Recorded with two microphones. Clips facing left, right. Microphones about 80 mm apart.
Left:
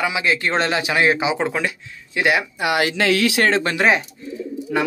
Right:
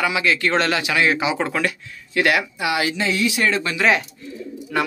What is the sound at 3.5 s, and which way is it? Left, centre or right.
Speech, left.